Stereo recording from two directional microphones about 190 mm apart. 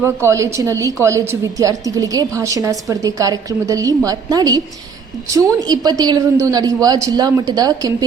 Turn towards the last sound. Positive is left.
turn(degrees=-20)  # may be behind; listen again after turning